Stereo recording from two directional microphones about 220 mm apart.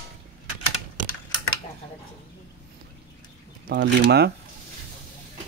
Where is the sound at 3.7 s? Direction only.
50° right (ahead or behind).